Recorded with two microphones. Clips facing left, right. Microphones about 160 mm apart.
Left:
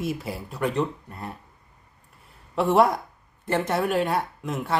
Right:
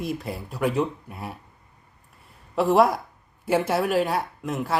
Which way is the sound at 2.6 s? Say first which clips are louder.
Right 1 dB; centre (ahead or behind).